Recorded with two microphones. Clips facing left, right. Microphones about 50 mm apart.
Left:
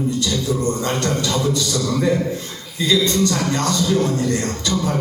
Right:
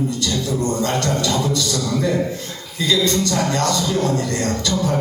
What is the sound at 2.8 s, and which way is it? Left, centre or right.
Speech, left.